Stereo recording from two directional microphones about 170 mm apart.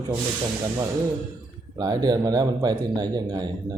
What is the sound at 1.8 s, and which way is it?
A man's voice, 25° right (ahead or behind).